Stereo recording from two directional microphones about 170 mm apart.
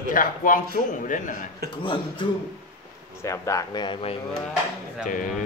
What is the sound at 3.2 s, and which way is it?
Speech, 15° left (ahead or behind).